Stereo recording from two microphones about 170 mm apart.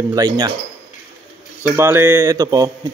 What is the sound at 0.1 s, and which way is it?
Speech, 20° right (ahead or behind).